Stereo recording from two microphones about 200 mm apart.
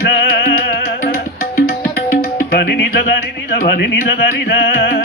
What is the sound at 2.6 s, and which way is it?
Music, 60° left (ahead or behind).